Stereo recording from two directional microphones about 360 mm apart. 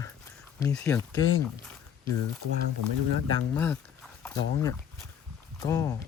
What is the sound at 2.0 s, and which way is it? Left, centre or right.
Speech, right.